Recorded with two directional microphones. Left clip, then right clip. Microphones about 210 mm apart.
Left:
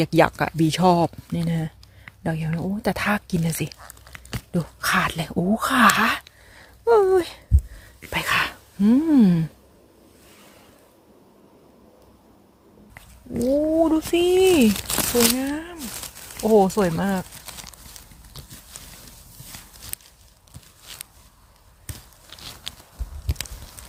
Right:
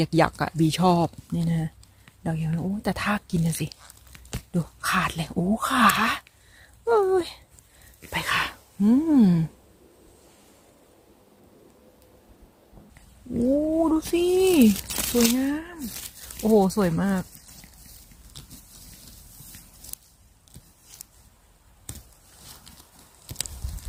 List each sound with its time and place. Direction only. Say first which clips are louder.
0.0 s speech: left 4 dB; 15° left (ahead or behind)
13.8 s speech: left 3 dB; 15° left (ahead or behind)
18.3 s clip-clop: left 2 dB; 10° left (ahead or behind)
23.2 s a sound: left 1 dB; centre (ahead or behind)